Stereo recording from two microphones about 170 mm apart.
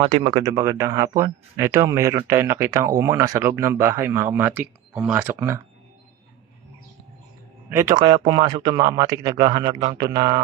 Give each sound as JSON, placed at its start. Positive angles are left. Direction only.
{"t": 0.0, "sound": "speech", "side_deg": -30}
{"t": 7.7, "sound": "speech", "side_deg": -15}